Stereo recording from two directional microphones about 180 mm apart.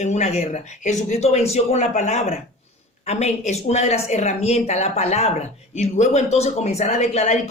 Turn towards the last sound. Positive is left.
turn(degrees=40)  # may be behind; listen again after turning